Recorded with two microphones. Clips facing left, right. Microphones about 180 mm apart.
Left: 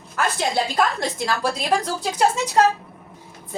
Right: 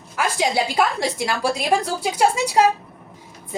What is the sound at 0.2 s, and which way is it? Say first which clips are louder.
Female singing: right 1 dB; 10° right (ahead or behind).